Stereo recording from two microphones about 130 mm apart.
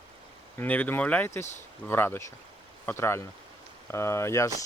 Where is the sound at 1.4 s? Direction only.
65° left (ahead or behind).